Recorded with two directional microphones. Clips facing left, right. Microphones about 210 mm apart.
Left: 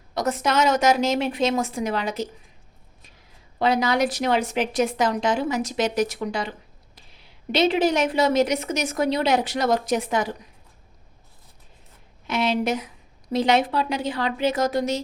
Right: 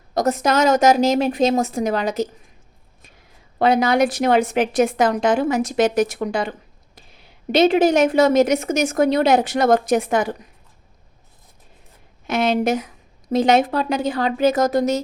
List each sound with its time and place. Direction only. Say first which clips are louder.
0.1 s a woman's voice: right 5 dB; 40° right (ahead or behind)
3.6 s a woman's voice: right 5 dB; 55° right (ahead or behind)
7.5 s a woman's voice: right 5 dB; 45° right (ahead or behind)
12.3 s a woman's voice: right 4 dB; 50° right (ahead or behind)